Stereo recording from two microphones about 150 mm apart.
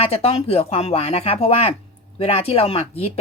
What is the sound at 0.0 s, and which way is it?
Speech, 40° left (ahead or behind).